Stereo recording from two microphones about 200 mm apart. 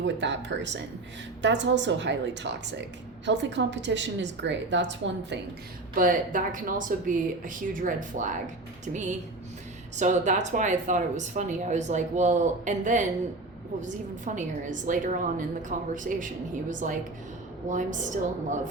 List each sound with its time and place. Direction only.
0.0 s a woman's voice: 60° right (ahead or behind)
5.9 s speech: 45° right (ahead or behind)